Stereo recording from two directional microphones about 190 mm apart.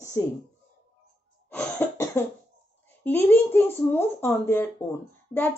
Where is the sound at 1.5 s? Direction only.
10° left (ahead or behind).